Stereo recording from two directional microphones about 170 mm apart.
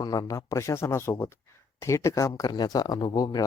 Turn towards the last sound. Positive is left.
turn(degrees=25)  # may be behind; listen again after turning